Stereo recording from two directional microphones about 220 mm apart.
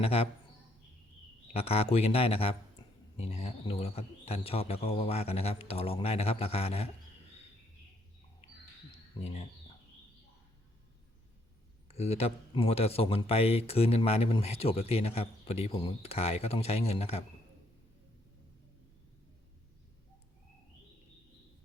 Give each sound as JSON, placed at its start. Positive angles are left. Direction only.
{"t": 0.0, "sound": "speech", "side_deg": 25}
{"t": 1.5, "sound": "speech", "side_deg": 30}
{"t": 9.2, "sound": "speech", "side_deg": 30}
{"t": 11.9, "sound": "speech", "side_deg": 30}